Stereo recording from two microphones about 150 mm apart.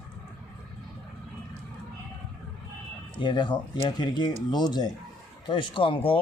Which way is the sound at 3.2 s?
30° left (ahead or behind).